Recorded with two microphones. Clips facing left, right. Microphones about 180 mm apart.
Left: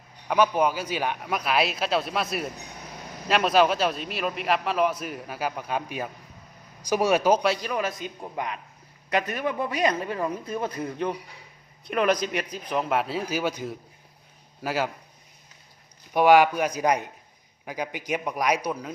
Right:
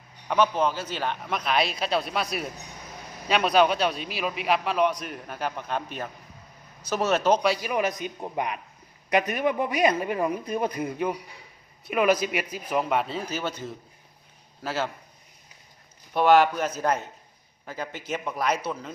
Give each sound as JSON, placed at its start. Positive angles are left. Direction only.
{"t": 0.3, "sound": "a man's voice", "side_deg": 10}
{"t": 7.7, "sound": "a man's voice", "side_deg": -20}
{"t": 16.1, "sound": "a man's voice", "side_deg": 10}